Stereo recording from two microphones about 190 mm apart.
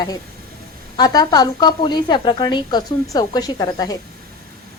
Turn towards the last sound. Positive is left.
turn(degrees=20)  # may be behind; listen again after turning